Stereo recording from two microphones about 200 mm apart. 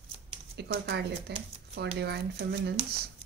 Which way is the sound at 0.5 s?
55° right (ahead or behind).